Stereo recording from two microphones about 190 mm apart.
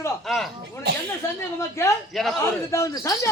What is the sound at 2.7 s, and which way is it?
Speech, 15° left (ahead or behind).